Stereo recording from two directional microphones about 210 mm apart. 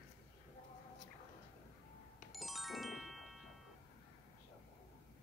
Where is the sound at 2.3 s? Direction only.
Centre (ahead or behind).